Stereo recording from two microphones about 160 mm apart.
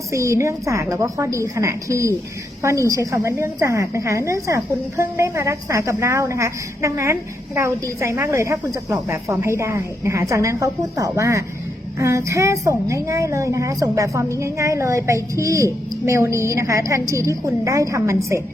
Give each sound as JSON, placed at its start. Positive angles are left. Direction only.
{"t": 0.1, "sound": "a woman's voice", "side_deg": -20}